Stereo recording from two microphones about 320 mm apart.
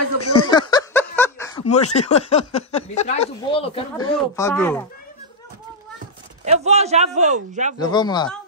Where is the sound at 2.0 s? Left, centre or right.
Centre.